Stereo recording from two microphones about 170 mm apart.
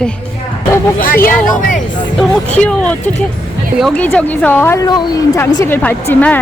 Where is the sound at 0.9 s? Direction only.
55° left (ahead or behind).